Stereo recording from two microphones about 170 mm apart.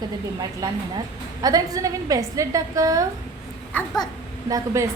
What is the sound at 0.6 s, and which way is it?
A woman's voice, 20° right (ahead or behind).